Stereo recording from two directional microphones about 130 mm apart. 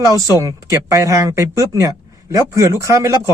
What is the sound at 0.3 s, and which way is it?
A man's voice, 25° right (ahead or behind).